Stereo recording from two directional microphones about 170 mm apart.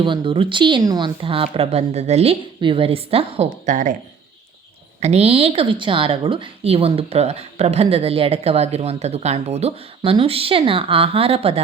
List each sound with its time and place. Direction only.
0.0 s a woman's voice: 30° right (ahead or behind); by 3.9 s 45° right (ahead or behind)
4.9 s a woman's voice: 40° right (ahead or behind)